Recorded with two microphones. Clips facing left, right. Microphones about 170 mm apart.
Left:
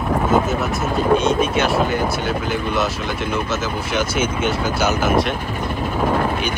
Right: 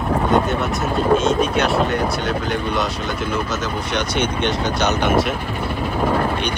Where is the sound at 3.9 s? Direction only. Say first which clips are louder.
Left 1 dB; 5° left (ahead or behind).